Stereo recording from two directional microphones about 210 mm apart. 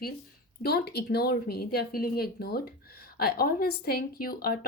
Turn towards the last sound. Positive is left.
turn(degrees=45)  # may be behind; listen again after turning